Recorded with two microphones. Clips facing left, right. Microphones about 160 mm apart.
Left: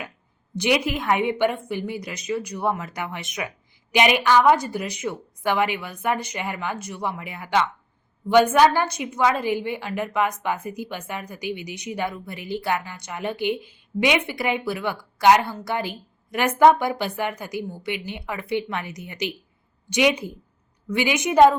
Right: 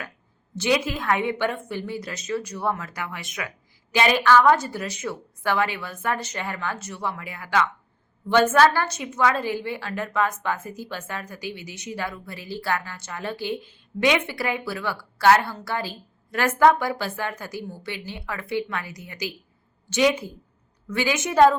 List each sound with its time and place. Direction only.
0.5 s a woman's voice: 15° left (ahead or behind)